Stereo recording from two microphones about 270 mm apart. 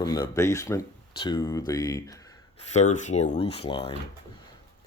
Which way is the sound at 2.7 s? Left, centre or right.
Left.